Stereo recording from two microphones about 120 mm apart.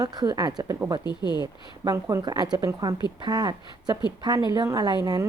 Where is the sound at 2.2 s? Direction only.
35° right (ahead or behind).